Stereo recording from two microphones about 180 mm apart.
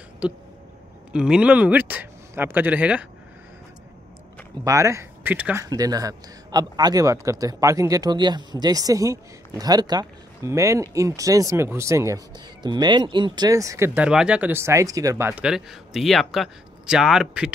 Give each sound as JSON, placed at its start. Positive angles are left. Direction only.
{"t": 0.2, "sound": "speech", "side_deg": -5}
{"t": 4.6, "sound": "speech", "side_deg": -15}
{"t": 5.6, "sound": "a man's voice", "side_deg": -20}